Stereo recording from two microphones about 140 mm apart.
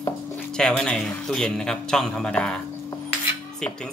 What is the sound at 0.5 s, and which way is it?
Speech, 5° left (ahead or behind).